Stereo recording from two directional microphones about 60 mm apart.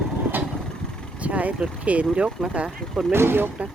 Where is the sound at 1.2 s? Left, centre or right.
Right.